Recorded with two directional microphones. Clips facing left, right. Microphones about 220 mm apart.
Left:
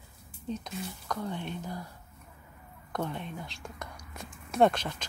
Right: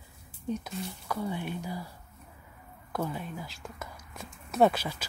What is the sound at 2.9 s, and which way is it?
Speech, 5° right (ahead or behind).